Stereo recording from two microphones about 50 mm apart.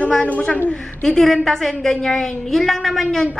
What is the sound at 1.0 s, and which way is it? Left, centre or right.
A woman's voice, centre.